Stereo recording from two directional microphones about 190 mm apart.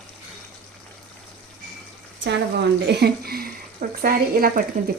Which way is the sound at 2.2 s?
65° right (ahead or behind).